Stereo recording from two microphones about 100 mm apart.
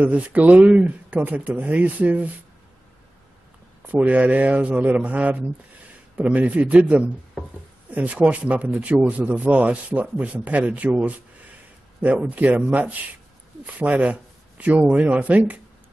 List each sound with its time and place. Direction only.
0.0 s speech: 15° right (ahead or behind)
3.8 s speech: 15° right (ahead or behind)